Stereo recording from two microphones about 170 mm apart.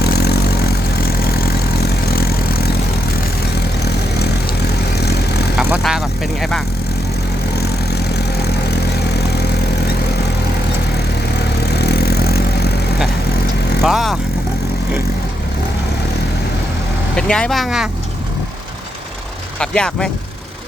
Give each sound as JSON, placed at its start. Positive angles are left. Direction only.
{"t": 0.0, "sound": "vehicle", "side_deg": 70}
{"t": 3.8, "sound": "vehicle", "side_deg": 70}
{"t": 5.5, "sound": "vehicle", "side_deg": -10}
{"t": 7.6, "sound": "vehicle", "side_deg": 70}
{"t": 11.6, "sound": "vehicle", "side_deg": 70}
{"t": 13.8, "sound": "vehicle", "side_deg": 0}
{"t": 17.2, "sound": "speech", "side_deg": 5}
{"t": 19.5, "sound": "speech", "side_deg": 5}